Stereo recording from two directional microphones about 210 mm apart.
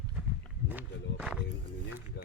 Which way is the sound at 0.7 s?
5° right (ahead or behind).